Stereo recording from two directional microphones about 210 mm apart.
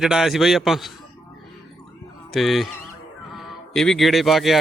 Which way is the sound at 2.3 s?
Centre (ahead or behind).